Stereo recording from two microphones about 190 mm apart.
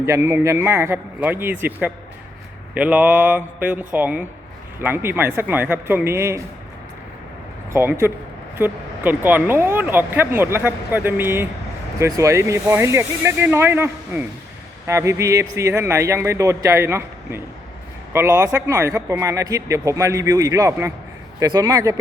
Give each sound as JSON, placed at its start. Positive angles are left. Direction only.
{"t": 0.0, "sound": "speech", "side_deg": -15}
{"t": 7.7, "sound": "speech", "side_deg": -10}